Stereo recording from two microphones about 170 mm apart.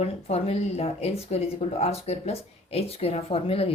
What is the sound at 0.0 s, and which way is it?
Speech, 40° left (ahead or behind).